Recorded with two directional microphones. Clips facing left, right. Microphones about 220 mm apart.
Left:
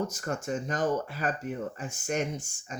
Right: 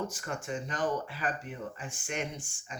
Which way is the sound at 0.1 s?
40° left (ahead or behind).